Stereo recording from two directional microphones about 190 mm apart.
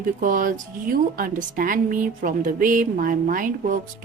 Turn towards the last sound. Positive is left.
turn(degrees=-45)  # may be behind; listen again after turning